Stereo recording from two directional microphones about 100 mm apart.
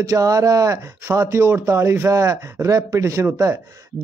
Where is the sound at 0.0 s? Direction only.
35° right (ahead or behind).